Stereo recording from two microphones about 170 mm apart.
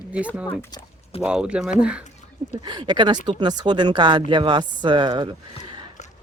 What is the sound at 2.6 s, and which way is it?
Speech, 25° right (ahead or behind).